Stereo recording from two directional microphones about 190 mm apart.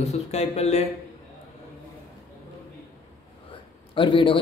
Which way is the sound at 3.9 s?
25° left (ahead or behind).